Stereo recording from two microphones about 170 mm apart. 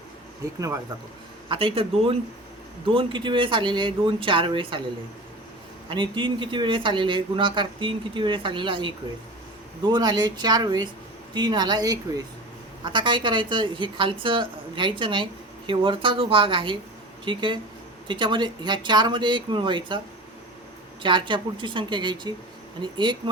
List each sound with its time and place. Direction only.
1.5 s a woman's voice: 30° right (ahead or behind)
5.9 s a woman's voice: 30° right (ahead or behind)
21.0 s a woman's voice: 30° right (ahead or behind)